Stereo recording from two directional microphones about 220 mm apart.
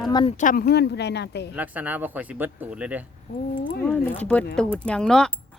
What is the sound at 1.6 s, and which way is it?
Speech, 5° right (ahead or behind).